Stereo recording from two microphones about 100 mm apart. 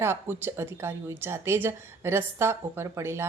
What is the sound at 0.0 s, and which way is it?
A woman's voice, 25° right (ahead or behind).